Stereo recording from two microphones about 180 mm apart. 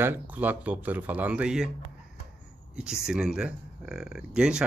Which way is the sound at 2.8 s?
5° right (ahead or behind).